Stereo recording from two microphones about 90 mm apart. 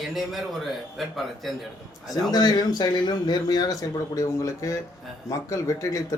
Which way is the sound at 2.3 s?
50° left (ahead or behind).